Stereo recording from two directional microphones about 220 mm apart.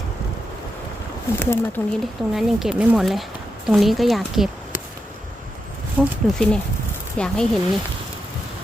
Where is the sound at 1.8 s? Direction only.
10° left (ahead or behind).